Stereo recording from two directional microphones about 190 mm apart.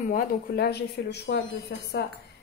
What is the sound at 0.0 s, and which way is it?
A woman's voice, 45° left (ahead or behind).